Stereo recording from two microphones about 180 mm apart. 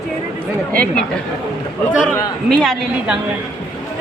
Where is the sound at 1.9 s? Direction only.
5° right (ahead or behind).